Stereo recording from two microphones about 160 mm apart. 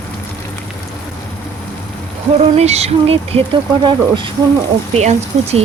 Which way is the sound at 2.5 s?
40° right (ahead or behind).